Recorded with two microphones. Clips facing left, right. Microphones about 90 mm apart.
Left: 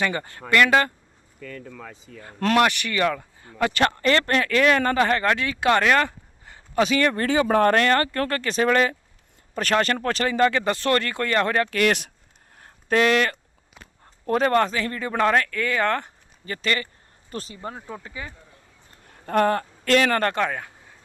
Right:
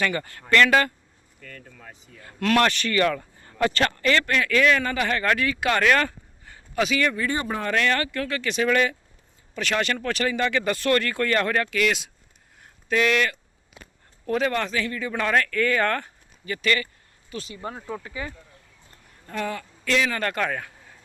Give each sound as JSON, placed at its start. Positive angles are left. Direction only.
{"t": 0.0, "sound": "speech", "side_deg": 20}
{"t": 2.2, "sound": "speech", "side_deg": 30}
{"t": 2.6, "sound": "speech", "side_deg": 15}
{"t": 3.9, "sound": "speech", "side_deg": 35}
{"t": 7.2, "sound": "speech", "side_deg": 90}
{"t": 7.7, "sound": "speech", "side_deg": 40}
{"t": 11.7, "sound": "speech", "side_deg": 50}
{"t": 12.6, "sound": "speech", "side_deg": 35}
{"t": 17.2, "sound": "speech", "side_deg": 40}
{"t": 19.2, "sound": "speech", "side_deg": 60}
{"t": 20.2, "sound": "speech", "side_deg": 25}